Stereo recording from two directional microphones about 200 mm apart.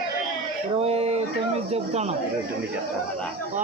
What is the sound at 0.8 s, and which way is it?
Speech, 30° right (ahead or behind).